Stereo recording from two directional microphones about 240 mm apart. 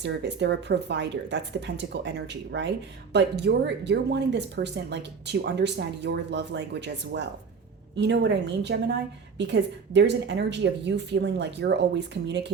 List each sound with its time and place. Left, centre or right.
0.0 s speech: right